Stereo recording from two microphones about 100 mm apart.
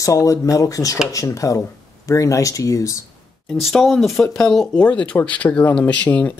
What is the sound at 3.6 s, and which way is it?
Speech, centre (ahead or behind).